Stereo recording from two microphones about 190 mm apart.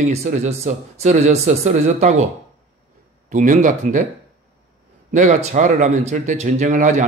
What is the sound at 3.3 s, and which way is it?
Speech, 40° right (ahead or behind).